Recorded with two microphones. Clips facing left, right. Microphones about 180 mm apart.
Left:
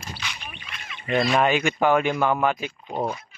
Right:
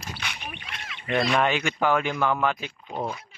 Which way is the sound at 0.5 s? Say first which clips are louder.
Right 2 dB; 65° right (ahead or behind).